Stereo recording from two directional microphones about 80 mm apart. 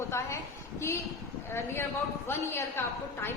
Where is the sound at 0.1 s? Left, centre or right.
Left.